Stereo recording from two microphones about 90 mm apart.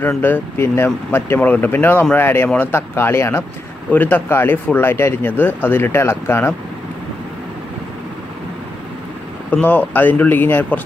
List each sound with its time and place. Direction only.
0.2 s speech: 25° left (ahead or behind)
9.5 s speech: 15° left (ahead or behind)